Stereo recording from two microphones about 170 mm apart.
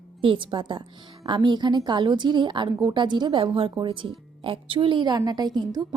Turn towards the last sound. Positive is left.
turn(degrees=-25)  # may be behind; listen again after turning